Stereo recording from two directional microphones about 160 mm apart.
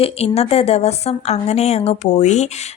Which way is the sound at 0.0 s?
40° left (ahead or behind).